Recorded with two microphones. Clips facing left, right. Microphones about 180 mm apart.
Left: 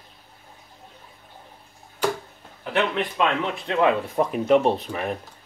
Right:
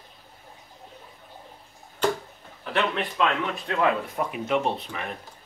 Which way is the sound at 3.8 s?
30° left (ahead or behind).